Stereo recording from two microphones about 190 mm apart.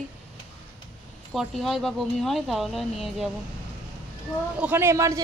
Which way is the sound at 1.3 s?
Centre (ahead or behind).